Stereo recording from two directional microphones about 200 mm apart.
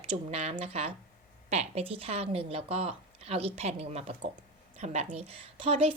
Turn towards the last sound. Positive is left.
turn(degrees=-30)  # may be behind; listen again after turning